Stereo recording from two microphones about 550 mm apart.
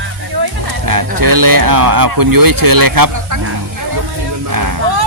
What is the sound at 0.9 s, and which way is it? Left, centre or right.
Speech, right.